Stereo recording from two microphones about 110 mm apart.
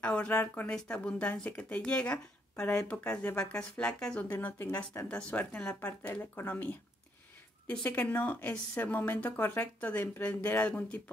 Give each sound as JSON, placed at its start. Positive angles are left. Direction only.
{"t": 0.0, "sound": "speech", "side_deg": 10}
{"t": 7.8, "sound": "speech", "side_deg": 15}